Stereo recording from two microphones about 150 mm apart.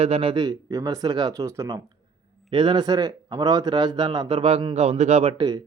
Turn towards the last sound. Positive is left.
turn(degrees=-40)  # may be behind; listen again after turning